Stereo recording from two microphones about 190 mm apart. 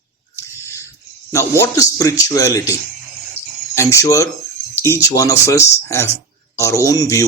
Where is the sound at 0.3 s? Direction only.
15° left (ahead or behind).